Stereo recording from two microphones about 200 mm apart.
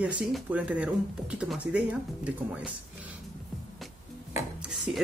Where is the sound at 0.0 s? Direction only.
5° right (ahead or behind).